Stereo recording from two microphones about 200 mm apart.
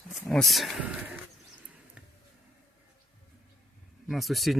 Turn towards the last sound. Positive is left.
turn(degrees=0)  # may be behind; listen again after turning